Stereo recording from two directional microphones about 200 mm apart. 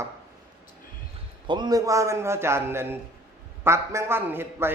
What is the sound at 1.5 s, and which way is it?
A man's voice, 20° right (ahead or behind).